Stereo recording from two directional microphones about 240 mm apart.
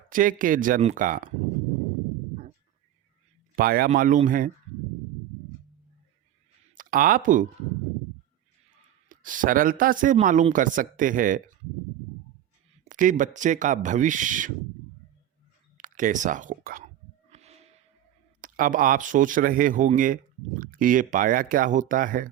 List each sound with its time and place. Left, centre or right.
0.1 s speech: right
3.5 s speech: right
6.7 s speech: right
9.0 s speech: right
12.8 s speech: right
15.8 s speech: right
17.3 s snort: right
18.3 s speech: right